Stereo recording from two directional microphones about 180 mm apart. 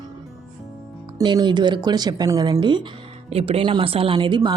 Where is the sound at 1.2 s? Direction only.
25° right (ahead or behind).